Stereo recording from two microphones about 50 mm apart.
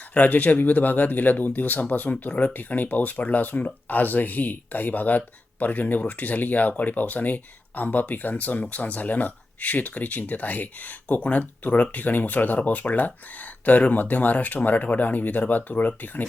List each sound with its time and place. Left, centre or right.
0.1 s speech: left